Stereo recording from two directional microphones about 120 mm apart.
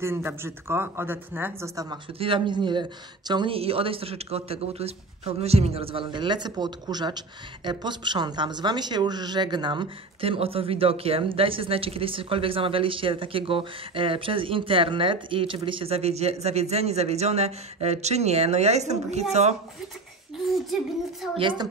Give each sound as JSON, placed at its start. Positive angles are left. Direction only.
{"t": 0.0, "sound": "speech", "side_deg": -20}
{"t": 2.1, "sound": "speech", "side_deg": -45}
{"t": 3.5, "sound": "a man's voice", "side_deg": -50}
{"t": 21.4, "sound": "a man's voice", "side_deg": -45}